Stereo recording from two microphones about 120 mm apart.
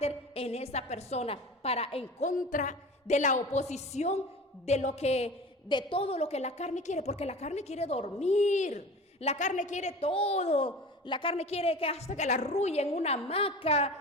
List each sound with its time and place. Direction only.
0.0 s a woman's voice: 55° left (ahead or behind)
2.2 s a woman's voice: 90° left; by 5.3 s 60° left (ahead or behind)
5.6 s a woman's voice: 45° left (ahead or behind)
8.2 s a woman's voice: 70° left (ahead or behind)
10.0 s a woman's voice: 50° left (ahead or behind)